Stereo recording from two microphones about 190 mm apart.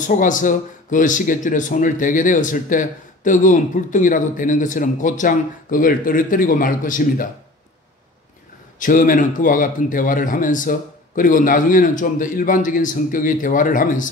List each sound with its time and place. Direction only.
0.0 s speech: 40° left (ahead or behind)
8.7 s speech: 45° left (ahead or behind)